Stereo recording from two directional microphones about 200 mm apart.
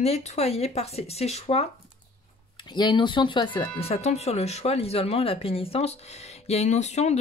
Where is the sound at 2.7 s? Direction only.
20° left (ahead or behind).